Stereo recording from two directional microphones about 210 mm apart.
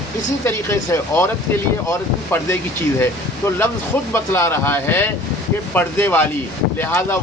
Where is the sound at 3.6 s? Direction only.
10° left (ahead or behind).